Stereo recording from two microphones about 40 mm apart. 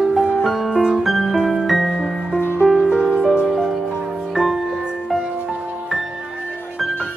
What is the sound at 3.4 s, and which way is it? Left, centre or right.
Music, centre.